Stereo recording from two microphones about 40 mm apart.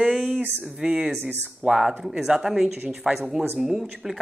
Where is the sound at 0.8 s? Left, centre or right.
Centre.